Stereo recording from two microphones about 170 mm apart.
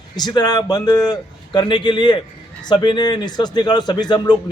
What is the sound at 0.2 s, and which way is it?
Speech, 25° left (ahead or behind).